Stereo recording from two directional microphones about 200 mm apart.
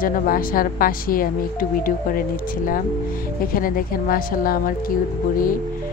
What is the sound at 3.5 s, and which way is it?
A woman's voice, 45° left (ahead or behind).